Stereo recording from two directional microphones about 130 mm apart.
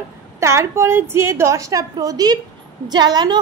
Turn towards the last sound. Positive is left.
turn(degrees=-35)  # may be behind; listen again after turning